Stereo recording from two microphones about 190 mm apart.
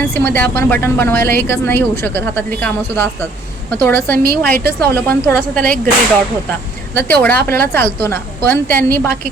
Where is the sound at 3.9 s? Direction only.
50° right (ahead or behind).